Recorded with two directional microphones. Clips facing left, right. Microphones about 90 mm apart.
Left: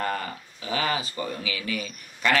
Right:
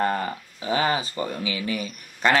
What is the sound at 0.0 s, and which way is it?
Speech, 30° right (ahead or behind).